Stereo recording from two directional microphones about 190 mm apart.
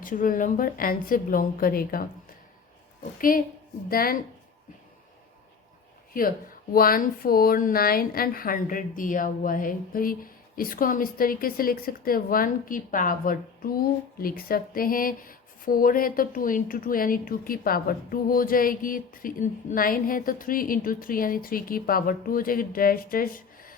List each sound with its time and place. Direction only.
0.0 s a woman's voice: 45° left (ahead or behind)
6.1 s a woman's voice: 45° left (ahead or behind)